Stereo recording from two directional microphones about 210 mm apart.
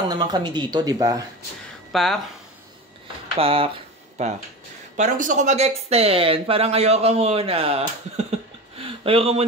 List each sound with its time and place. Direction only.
0.1 s speech: 20° right (ahead or behind)
1.9 s speech: centre (ahead or behind)
3.3 s speech: 25° right (ahead or behind)
8.7 s a sound: 25° right (ahead or behind)